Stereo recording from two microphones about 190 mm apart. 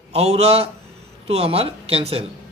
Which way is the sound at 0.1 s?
35° right (ahead or behind).